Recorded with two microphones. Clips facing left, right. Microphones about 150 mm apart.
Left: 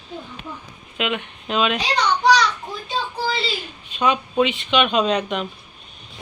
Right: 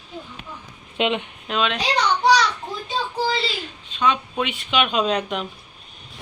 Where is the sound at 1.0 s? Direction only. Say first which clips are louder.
Right 3 dB; 25° right (ahead or behind).